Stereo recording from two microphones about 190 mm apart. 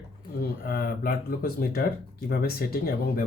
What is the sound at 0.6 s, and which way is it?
Speech, 50° left (ahead or behind).